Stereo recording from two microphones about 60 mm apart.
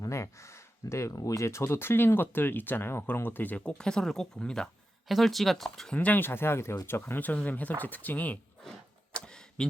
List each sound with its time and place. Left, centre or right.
0.0 s a sound: left
1.1 s speech: left
3.2 s speech: left
3.6 s speech: centre
5.0 s speech: centre
5.9 s speech: left
6.1 s speech: left
7.2 s speech: left
9.1 s tick: centre